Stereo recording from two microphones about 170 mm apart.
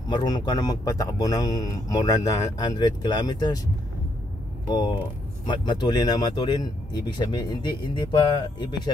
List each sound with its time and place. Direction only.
0.1 s a man's voice: 25° left (ahead or behind)
4.6 s a man's voice: 25° left (ahead or behind)